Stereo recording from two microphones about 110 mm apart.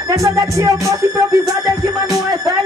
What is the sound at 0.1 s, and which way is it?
Music, 30° right (ahead or behind).